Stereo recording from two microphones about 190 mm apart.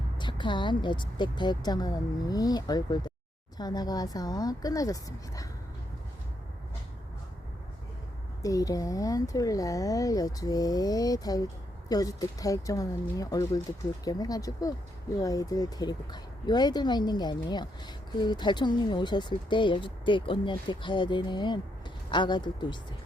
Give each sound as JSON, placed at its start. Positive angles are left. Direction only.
{"t": 0.2, "sound": "speech", "side_deg": 25}
{"t": 8.4, "sound": "speech", "side_deg": 20}